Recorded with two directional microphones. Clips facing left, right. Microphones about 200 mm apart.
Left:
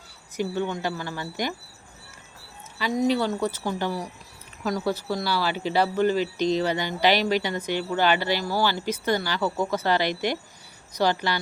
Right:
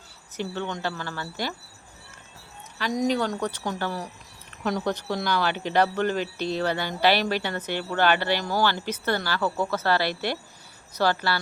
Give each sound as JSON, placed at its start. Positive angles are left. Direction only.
{"t": 0.3, "sound": "speech", "side_deg": 10}
{"t": 2.7, "sound": "speech", "side_deg": 5}